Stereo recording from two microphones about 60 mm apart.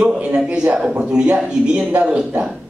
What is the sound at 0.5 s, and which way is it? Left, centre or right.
A man's voice, centre.